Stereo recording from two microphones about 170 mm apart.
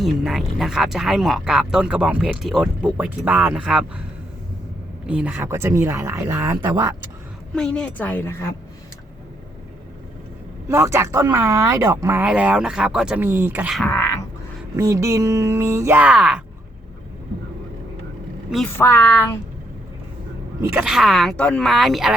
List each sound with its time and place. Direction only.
0.0 s speech: centre (ahead or behind)
5.0 s speech: 10° right (ahead or behind)
6.7 s speech: 25° right (ahead or behind)
7.5 s a woman's voice: 5° left (ahead or behind)
10.7 s speech: 15° right (ahead or behind)
13.8 s a sound: 10° left (ahead or behind)
14.8 s speech: 20° right (ahead or behind)
18.8 s a woman's voice: 15° left (ahead or behind)
20.6 s speech: 5° right (ahead or behind)